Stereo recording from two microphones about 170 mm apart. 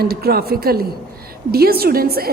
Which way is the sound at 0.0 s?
65° right (ahead or behind).